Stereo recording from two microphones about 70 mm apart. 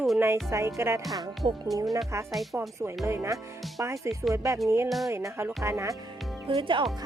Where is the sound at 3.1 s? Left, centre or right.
Right.